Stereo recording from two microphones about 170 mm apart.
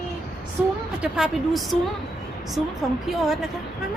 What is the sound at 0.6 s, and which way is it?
A woman's voice, 5° right (ahead or behind).